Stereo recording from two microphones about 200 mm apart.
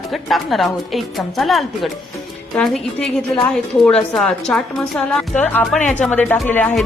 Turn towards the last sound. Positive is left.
turn(degrees=10)  # may be behind; listen again after turning